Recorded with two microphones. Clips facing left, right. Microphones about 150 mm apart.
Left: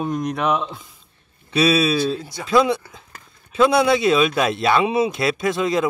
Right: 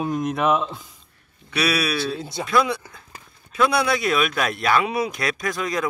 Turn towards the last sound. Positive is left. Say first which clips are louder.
# left 5 dB
turn(degrees=25)  # may be behind; listen again after turning